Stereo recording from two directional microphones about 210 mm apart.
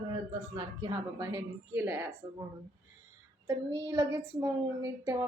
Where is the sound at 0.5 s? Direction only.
20° right (ahead or behind).